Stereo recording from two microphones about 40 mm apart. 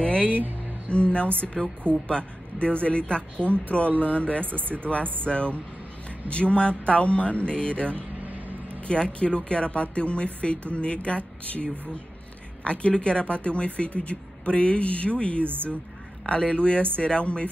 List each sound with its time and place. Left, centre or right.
0.0 s music: left
0.8 s speech: left
4.5 s speech: right
5.2 s speech: left
8.3 s vehicle: right
8.8 s speech: left
15.4 s speech: right
16.3 s speech: left